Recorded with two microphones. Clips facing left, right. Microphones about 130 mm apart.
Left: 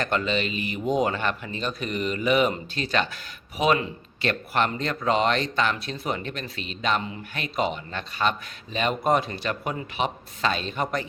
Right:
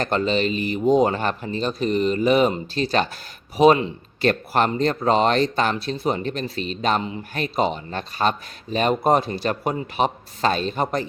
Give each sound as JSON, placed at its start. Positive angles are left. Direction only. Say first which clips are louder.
{"t": 0.0, "sound": "speech", "louder": "right 4 dB", "side_deg": -35}